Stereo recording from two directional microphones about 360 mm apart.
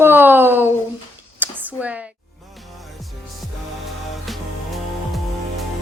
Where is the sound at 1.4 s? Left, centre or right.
Centre.